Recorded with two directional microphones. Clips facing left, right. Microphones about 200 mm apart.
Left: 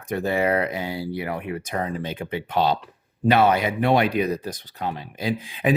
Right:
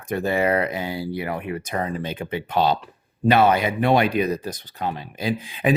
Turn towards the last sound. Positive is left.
turn(degrees=-50)  # may be behind; listen again after turning